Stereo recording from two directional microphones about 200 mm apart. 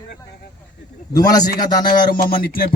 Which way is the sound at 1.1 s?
20° left (ahead or behind).